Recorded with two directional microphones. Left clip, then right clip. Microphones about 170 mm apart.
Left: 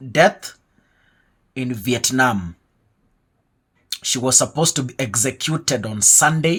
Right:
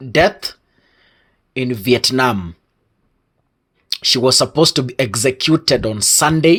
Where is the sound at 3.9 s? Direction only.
40° right (ahead or behind).